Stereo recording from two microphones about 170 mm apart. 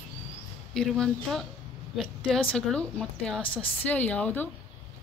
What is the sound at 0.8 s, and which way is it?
A woman's voice, 5° left (ahead or behind).